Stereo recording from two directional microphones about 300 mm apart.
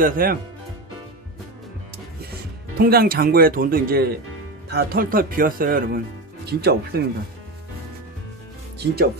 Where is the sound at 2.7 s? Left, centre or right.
Right.